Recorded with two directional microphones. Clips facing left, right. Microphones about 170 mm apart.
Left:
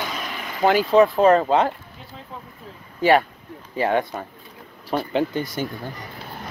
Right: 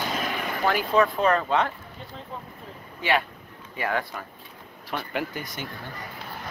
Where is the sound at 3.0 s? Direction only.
40° left (ahead or behind).